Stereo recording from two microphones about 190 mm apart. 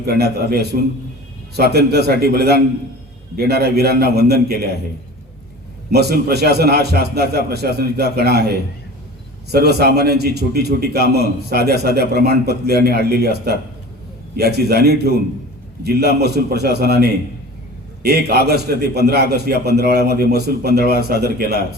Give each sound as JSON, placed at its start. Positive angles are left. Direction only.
{"t": 0.0, "sound": "a man's voice", "side_deg": -60}
{"t": 5.9, "sound": "a man's voice", "side_deg": -55}